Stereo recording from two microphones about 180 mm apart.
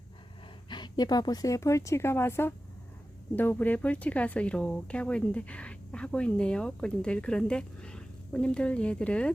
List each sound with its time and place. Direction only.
0.7 s speech: 25° left (ahead or behind); by 9.3 s 5° left (ahead or behind)